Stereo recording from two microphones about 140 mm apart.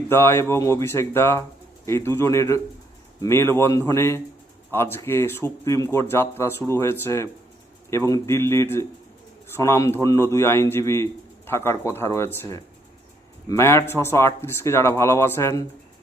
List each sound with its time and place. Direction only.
0.1 s a man's voice: 15° left (ahead or behind)